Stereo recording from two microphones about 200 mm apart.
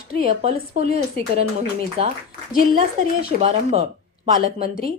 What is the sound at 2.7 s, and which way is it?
A woman's voice, 30° right (ahead or behind).